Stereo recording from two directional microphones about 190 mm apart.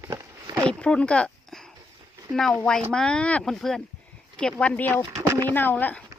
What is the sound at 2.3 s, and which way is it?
Speech, 5° left (ahead or behind).